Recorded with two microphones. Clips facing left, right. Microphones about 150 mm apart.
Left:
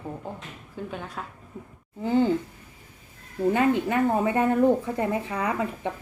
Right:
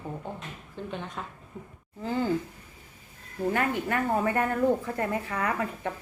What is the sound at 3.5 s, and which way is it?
Speech, 20° left (ahead or behind).